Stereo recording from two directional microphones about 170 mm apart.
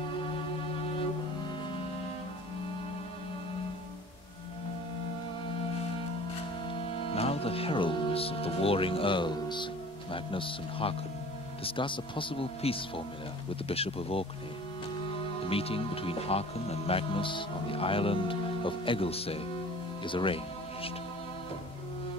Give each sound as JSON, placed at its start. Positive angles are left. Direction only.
{"t": 6.7, "sound": "music", "side_deg": 35}
{"t": 10.1, "sound": "speech", "side_deg": 30}
{"t": 15.4, "sound": "speech", "side_deg": 35}